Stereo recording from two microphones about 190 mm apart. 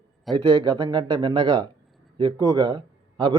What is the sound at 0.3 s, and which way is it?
Speech, 25° right (ahead or behind).